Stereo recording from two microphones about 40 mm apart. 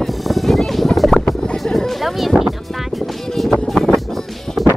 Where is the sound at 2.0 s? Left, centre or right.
Centre.